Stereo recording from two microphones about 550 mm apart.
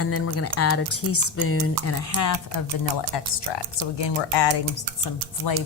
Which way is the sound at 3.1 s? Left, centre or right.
Left.